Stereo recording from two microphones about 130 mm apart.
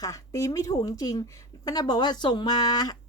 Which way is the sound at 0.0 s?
25° left (ahead or behind).